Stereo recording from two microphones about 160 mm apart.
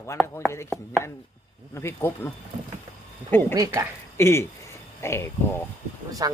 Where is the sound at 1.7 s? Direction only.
15° left (ahead or behind).